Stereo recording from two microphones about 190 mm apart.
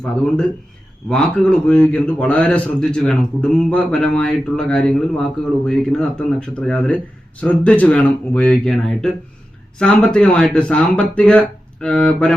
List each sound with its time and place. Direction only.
1.1 s a man's voice: 5° left (ahead or behind)